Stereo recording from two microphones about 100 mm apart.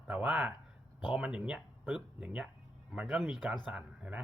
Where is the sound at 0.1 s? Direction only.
15° right (ahead or behind).